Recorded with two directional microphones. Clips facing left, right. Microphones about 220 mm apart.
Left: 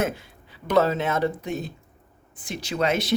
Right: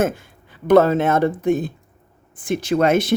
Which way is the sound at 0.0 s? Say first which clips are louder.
Right 6 dB; 50° right (ahead or behind).